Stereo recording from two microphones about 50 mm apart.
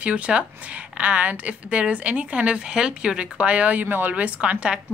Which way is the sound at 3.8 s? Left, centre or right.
Right.